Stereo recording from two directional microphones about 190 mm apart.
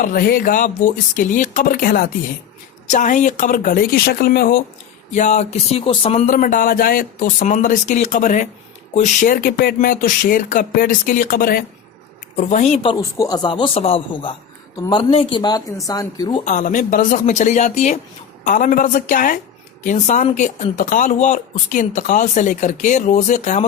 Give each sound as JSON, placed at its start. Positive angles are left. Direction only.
{"t": 0.0, "sound": "speech", "side_deg": 50}
{"t": 5.1, "sound": "speech", "side_deg": 40}
{"t": 12.4, "sound": "speech", "side_deg": 40}
{"t": 16.4, "sound": "speech", "side_deg": 40}